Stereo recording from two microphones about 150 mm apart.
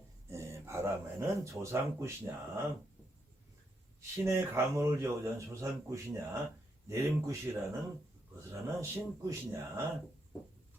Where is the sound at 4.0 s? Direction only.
20° right (ahead or behind).